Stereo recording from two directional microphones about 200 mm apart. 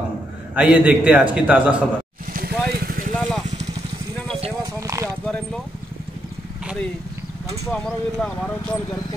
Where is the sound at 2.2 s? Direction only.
45° right (ahead or behind).